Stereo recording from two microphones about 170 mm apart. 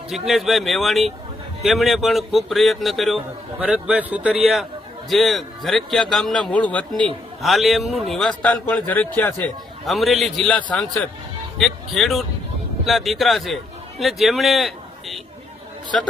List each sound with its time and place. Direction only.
0.1 s a man's voice: centre (ahead or behind)